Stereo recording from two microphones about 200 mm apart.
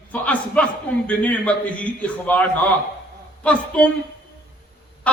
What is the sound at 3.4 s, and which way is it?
Speech, 5° left (ahead or behind).